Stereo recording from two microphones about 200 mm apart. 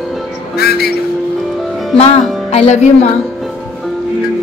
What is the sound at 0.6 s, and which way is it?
Speech, 50° left (ahead or behind).